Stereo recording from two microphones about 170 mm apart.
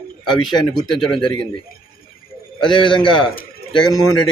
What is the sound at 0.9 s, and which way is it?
Speech, centre (ahead or behind).